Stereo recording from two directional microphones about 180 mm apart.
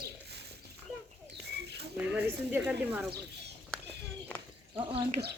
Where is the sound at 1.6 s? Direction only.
65° right (ahead or behind).